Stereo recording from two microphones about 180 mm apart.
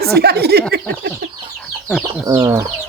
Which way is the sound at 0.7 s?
65° right (ahead or behind).